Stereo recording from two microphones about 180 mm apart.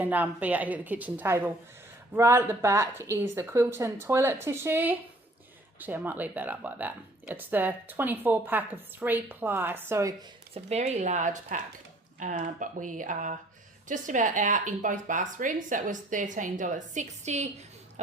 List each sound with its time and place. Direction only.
0.0 s speech: 10° right (ahead or behind)
10.5 s speech: 35° right (ahead or behind)